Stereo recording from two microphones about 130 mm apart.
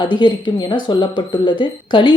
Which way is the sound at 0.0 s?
35° left (ahead or behind).